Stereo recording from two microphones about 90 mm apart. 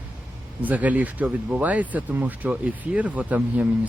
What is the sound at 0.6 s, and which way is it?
Speech, 15° right (ahead or behind).